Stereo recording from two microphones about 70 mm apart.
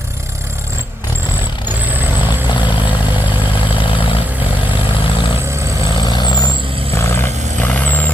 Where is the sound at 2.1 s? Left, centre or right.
Left.